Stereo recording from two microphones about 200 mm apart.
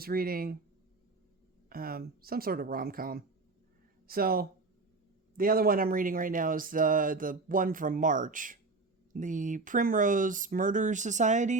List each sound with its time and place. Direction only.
0.0 s speech: 45° right (ahead or behind)
1.7 s speech: 50° right (ahead or behind)